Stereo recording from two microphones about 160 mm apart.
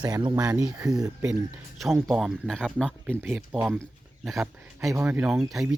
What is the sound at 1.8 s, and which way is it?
Speech, centre (ahead or behind).